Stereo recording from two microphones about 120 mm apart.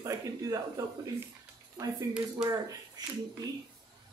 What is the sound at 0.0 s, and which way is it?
Speech, 30° right (ahead or behind).